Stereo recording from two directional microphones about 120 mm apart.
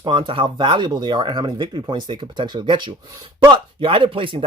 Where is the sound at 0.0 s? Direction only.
40° right (ahead or behind).